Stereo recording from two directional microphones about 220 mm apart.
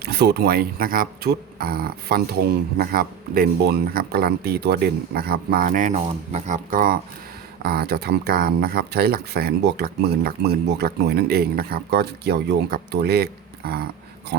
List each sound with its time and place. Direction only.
0.0 s speech: 45° right (ahead or behind)